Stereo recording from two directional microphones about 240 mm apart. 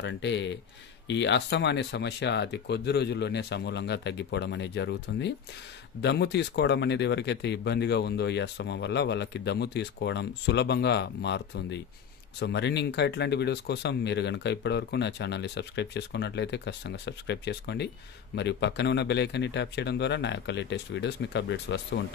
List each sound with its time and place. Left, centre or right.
0.0 s speech: left